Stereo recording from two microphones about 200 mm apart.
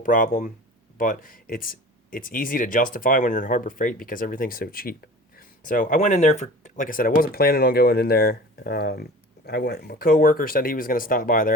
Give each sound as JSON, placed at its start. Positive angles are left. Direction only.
{"t": 0.0, "sound": "speech", "side_deg": 40}